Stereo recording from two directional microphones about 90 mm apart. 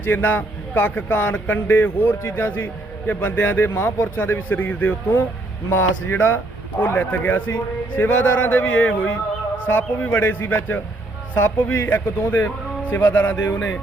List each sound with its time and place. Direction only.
0.0 s speech: 20° left (ahead or behind)